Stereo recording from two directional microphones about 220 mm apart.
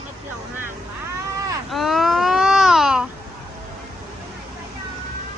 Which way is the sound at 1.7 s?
Centre (ahead or behind).